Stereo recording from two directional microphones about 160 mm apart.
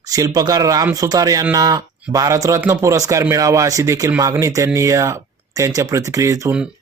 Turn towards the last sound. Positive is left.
turn(degrees=-20)  # may be behind; listen again after turning